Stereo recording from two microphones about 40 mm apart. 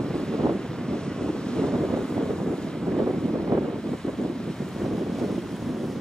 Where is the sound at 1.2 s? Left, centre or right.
Centre.